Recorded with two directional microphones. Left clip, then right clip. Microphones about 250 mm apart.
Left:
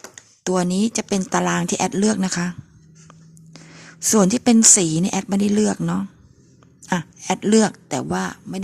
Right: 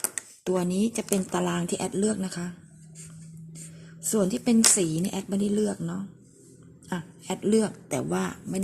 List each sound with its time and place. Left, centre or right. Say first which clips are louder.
0.4 s speech: left 6 dB; left
4.1 s speech: left 8 dB; left